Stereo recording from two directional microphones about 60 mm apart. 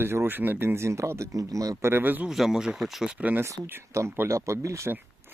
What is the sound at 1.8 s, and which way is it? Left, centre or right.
Speech, right.